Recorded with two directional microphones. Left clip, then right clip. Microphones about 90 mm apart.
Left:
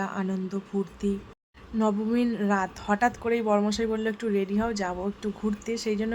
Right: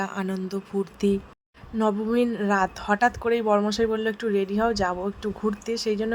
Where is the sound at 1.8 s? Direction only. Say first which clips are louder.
Right 3 dB; 45° right (ahead or behind).